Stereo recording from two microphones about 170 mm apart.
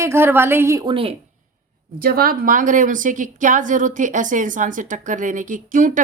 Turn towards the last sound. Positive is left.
turn(degrees=-50)  # may be behind; listen again after turning